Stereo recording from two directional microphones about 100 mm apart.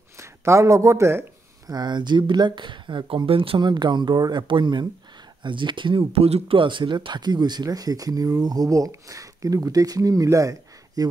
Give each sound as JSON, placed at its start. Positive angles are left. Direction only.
{"t": 0.2, "sound": "speech", "side_deg": -30}
{"t": 1.7, "sound": "speech", "side_deg": -45}
{"t": 3.3, "sound": "speech", "side_deg": -65}